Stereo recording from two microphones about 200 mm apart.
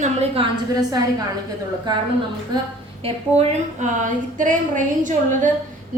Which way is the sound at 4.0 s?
40° right (ahead or behind).